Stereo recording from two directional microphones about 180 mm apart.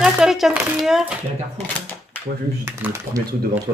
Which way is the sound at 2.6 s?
15° right (ahead or behind).